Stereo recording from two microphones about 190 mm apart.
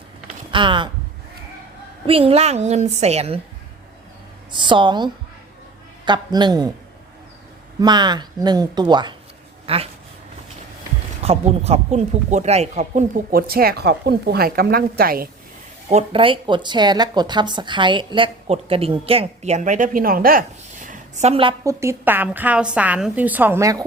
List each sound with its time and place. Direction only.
0.5 s speech: 25° right (ahead or behind)
2.0 s a woman's voice: 30° right (ahead or behind)
4.5 s speech: 25° right (ahead or behind)
7.8 s speech: 20° right (ahead or behind)
11.2 s speech: 35° right (ahead or behind); by 15.3 s 50° right (ahead or behind)
15.9 s speech: 30° right (ahead or behind)
21.6 s a woman's voice: 15° right (ahead or behind)